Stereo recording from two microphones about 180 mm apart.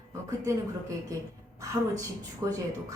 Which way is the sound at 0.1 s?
15° right (ahead or behind).